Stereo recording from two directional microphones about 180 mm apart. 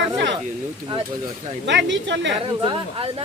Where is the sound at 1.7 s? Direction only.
85° right.